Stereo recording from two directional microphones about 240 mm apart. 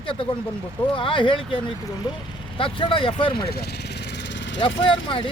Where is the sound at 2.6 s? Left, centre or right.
Left.